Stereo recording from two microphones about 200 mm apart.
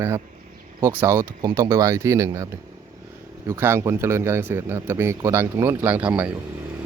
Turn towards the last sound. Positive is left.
turn(degrees=-5)  # may be behind; listen again after turning